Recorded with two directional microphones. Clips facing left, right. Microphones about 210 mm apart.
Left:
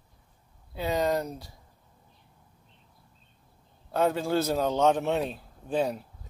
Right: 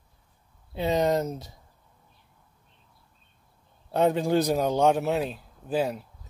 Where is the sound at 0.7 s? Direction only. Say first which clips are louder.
Right 3 dB; 20° right (ahead or behind).